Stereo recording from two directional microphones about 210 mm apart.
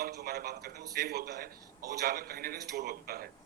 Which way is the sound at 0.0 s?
50° right (ahead or behind).